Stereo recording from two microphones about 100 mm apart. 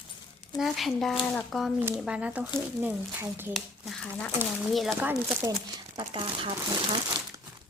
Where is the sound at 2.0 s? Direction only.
10° right (ahead or behind).